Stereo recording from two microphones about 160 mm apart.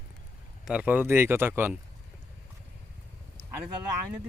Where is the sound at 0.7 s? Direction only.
10° right (ahead or behind).